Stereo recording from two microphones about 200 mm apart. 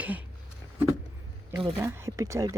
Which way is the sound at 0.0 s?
5° right (ahead or behind).